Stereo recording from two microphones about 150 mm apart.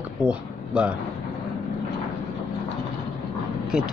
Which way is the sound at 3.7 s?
5° right (ahead or behind).